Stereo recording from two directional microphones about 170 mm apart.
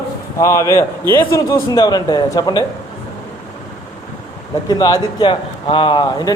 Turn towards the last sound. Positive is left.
turn(degrees=25)  # may be behind; listen again after turning